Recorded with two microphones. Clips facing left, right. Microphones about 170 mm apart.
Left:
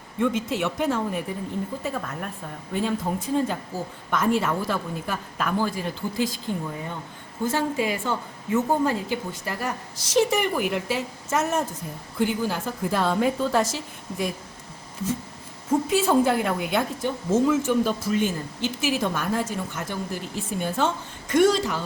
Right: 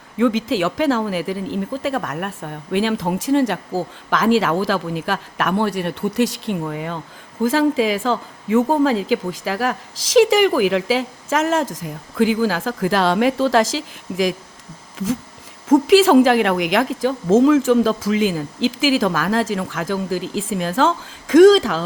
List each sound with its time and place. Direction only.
0.2 s a woman's voice: 90° right
15.7 s a woman's voice: 90° right